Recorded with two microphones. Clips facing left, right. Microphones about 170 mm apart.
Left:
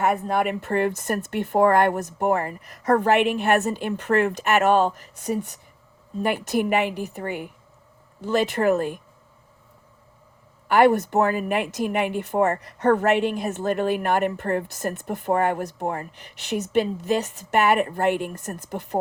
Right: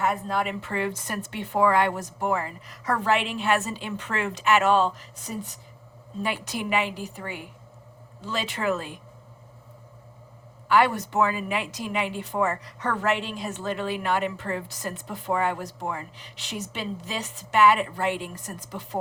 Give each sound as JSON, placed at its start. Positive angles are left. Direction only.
{"t": 0.0, "sound": "a woman's voice", "side_deg": 55}
{"t": 10.7, "sound": "a woman's voice", "side_deg": 55}